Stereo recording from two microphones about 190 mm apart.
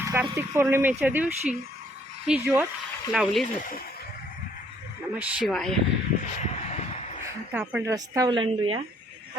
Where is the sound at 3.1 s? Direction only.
Centre (ahead or behind).